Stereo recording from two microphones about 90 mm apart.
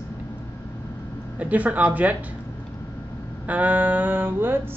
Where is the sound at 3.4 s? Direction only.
15° right (ahead or behind).